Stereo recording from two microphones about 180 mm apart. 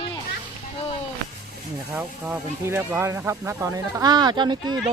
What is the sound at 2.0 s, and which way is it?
Speech, 5° right (ahead or behind).